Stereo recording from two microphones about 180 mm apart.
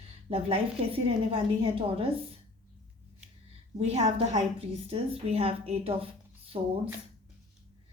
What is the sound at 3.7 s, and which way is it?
A woman's voice, 35° right (ahead or behind).